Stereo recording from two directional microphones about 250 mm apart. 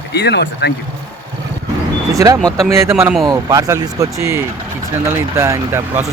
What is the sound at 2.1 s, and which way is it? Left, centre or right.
Speech, centre.